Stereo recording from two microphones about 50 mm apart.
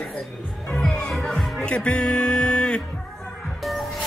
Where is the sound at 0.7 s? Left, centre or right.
Centre.